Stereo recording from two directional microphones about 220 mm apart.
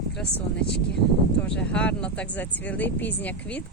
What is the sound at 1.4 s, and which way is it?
Speech, 5° left (ahead or behind).